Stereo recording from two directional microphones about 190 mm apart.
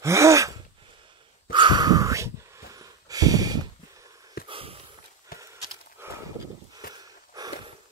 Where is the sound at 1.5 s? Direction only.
25° right (ahead or behind).